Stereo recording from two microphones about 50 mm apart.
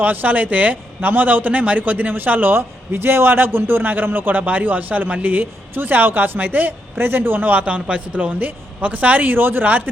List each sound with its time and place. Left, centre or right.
0.0 s a man's voice: right
2.6 s a man's voice: right